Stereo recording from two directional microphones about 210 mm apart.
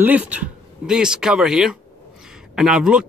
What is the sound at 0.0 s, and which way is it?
Speech, 5° right (ahead or behind).